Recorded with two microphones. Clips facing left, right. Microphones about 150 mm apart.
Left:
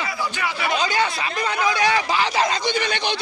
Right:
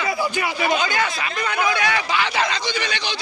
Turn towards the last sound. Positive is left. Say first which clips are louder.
# left 3 dB
turn(degrees=50)  # may be behind; listen again after turning